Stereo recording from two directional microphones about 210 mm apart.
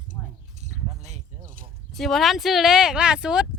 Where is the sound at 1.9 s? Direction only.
Centre (ahead or behind).